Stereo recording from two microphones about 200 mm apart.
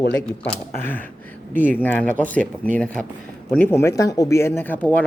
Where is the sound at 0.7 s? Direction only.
10° left (ahead or behind).